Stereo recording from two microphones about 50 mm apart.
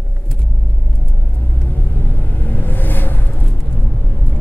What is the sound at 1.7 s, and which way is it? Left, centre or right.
Vehicle, left.